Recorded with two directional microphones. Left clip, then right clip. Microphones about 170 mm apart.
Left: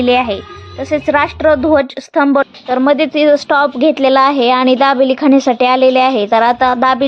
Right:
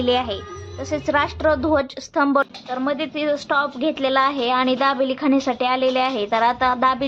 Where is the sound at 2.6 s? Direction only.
45° left (ahead or behind).